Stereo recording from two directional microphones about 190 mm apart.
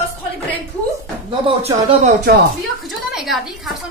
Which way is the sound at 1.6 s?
35° right (ahead or behind).